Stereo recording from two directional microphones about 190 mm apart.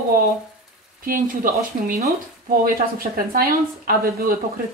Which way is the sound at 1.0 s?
45° right (ahead or behind).